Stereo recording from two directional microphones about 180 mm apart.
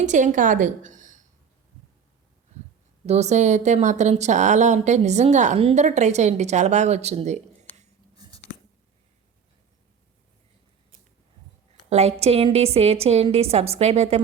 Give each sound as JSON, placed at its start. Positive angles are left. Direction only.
{"t": 0.0, "sound": "a woman's voice", "side_deg": -45}
{"t": 3.1, "sound": "a woman's voice", "side_deg": -40}
{"t": 8.1, "sound": "a sound", "side_deg": -20}
{"t": 11.9, "sound": "a woman's voice", "side_deg": -40}